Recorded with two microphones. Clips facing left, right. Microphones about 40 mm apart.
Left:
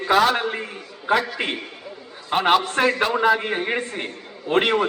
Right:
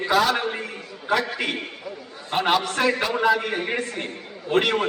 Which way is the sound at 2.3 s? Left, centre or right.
Left.